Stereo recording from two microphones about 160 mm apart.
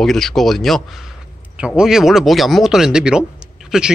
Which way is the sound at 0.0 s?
Centre (ahead or behind).